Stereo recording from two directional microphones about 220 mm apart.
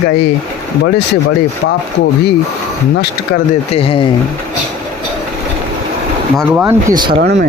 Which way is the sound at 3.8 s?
25° left (ahead or behind).